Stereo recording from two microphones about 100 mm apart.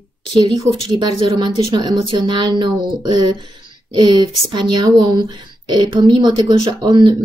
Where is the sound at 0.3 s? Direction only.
50° right (ahead or behind).